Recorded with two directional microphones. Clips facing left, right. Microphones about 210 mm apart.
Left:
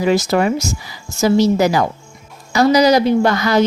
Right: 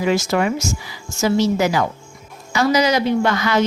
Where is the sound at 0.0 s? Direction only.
35° left (ahead or behind).